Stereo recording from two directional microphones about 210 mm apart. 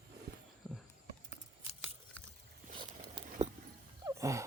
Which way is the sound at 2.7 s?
25° right (ahead or behind).